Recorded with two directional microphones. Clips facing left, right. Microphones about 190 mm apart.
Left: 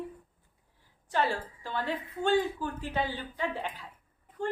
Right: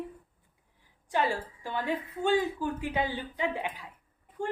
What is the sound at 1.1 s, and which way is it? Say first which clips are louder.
A woman's voice: right 1 dB; 15° right (ahead or behind).